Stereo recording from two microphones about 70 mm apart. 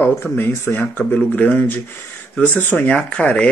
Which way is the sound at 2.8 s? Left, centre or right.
Centre.